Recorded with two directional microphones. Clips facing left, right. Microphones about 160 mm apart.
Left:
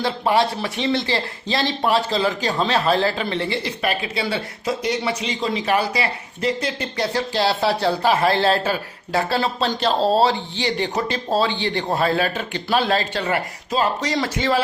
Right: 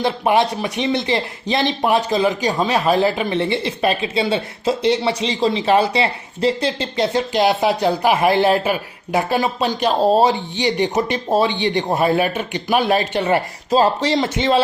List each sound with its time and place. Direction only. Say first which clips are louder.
0.0 s speech: right 2 dB; 20° right (ahead or behind)
13.7 s speech: right 6 dB; 35° right (ahead or behind)